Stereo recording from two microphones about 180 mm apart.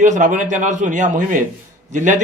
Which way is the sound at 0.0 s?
45° right (ahead or behind).